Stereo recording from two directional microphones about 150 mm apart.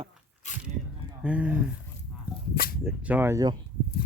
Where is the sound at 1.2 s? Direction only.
10° right (ahead or behind).